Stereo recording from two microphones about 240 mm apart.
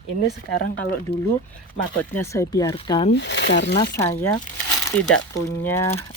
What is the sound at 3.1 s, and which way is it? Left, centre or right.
Speech, left.